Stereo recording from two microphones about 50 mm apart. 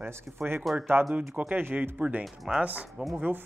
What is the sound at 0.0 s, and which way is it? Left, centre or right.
Speech, right.